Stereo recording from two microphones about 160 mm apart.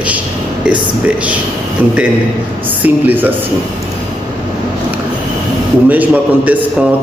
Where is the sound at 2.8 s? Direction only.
10° right (ahead or behind).